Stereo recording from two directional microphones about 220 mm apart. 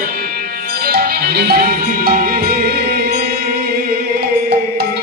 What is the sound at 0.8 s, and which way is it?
Music, 45° right (ahead or behind).